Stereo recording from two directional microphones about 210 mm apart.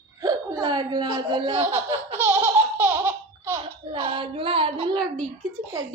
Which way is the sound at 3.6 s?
25° right (ahead or behind).